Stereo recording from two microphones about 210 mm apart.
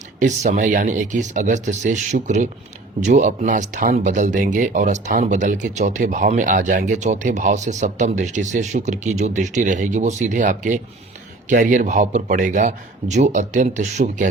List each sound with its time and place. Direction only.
0.2 s speech: 35° right (ahead or behind)